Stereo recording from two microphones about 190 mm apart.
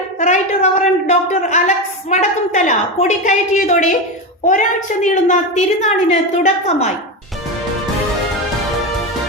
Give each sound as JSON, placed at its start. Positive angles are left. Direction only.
{"t": 0.2, "sound": "a woman's voice", "side_deg": 40}
{"t": 5.0, "sound": "a woman's voice", "side_deg": 40}